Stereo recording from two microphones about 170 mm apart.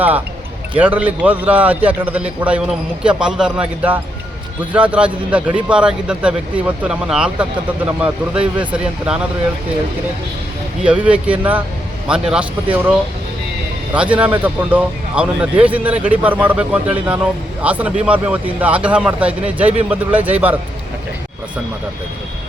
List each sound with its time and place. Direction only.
0.8 s speech: 10° right (ahead or behind)
10.8 s speech: 10° right (ahead or behind)